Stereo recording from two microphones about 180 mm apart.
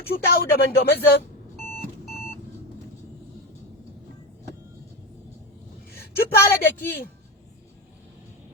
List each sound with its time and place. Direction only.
0.0 s speech: 55° left (ahead or behind)
5.9 s a woman's voice: 55° left (ahead or behind)